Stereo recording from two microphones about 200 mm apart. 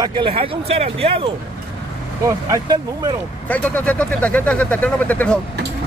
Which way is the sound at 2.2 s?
15° right (ahead or behind).